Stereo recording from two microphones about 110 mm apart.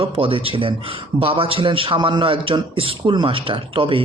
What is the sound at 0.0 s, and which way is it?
A man's voice, 55° right (ahead or behind).